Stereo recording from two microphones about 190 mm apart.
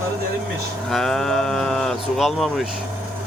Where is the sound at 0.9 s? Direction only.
Centre (ahead or behind).